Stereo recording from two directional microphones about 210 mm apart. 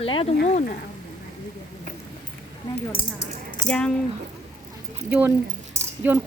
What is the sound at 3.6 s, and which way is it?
Speech, 5° left (ahead or behind).